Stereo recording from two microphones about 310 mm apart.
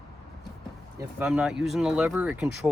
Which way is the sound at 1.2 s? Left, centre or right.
Centre.